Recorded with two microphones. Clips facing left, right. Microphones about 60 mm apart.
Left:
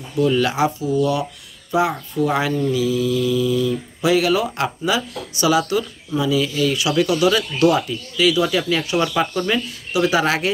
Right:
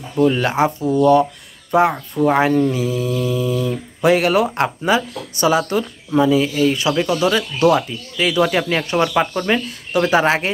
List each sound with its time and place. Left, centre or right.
0.1 s speech: right
9.0 s speech: right
9.5 s speech: right